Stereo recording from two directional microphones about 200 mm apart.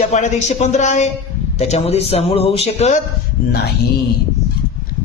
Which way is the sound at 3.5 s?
55° left (ahead or behind).